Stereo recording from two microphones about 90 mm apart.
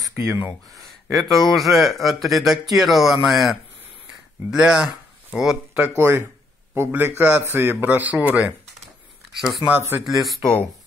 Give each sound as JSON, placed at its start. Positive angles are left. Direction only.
{"t": 0.1, "sound": "speech", "side_deg": -25}
{"t": 1.3, "sound": "speech", "side_deg": 0}
{"t": 5.8, "sound": "a man's voice", "side_deg": -25}
{"t": 9.7, "sound": "a man's voice", "side_deg": -25}
{"t": 10.0, "sound": "speech", "side_deg": 0}